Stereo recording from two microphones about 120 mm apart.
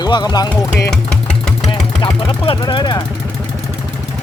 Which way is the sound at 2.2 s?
45° left (ahead or behind).